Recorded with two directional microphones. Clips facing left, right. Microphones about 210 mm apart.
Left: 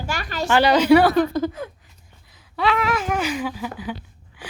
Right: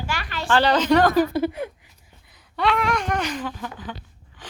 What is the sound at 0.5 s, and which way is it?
Speech, 10° left (ahead or behind).